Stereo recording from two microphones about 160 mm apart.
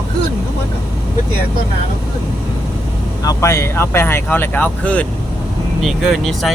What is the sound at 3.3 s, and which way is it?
Speech, 15° left (ahead or behind).